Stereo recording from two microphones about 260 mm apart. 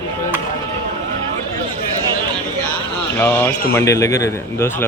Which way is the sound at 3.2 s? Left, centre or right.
Centre.